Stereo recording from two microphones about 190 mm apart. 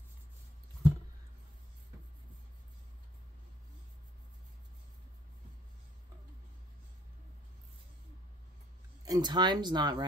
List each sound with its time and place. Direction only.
9.0 s speech: 20° right (ahead or behind)